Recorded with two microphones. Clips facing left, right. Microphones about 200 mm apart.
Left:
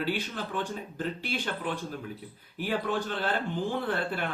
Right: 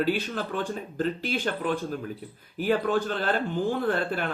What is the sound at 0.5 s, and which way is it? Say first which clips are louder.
Speech: right 3 dB; 50° right (ahead or behind).